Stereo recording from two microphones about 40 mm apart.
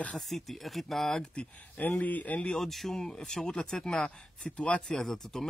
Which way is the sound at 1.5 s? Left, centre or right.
Left.